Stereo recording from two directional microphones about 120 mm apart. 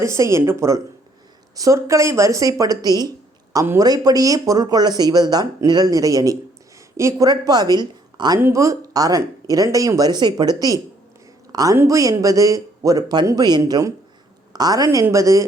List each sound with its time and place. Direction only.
0.0 s speech: 25° right (ahead or behind)
8.4 s speech: 20° right (ahead or behind)